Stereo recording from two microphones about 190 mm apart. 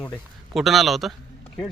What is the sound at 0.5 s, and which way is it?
Speech, centre (ahead or behind).